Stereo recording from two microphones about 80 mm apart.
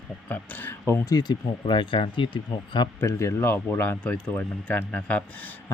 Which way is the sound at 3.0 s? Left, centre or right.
Left.